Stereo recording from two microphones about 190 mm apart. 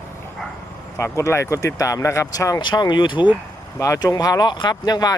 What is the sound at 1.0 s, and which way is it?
Speech, 15° left (ahead or behind).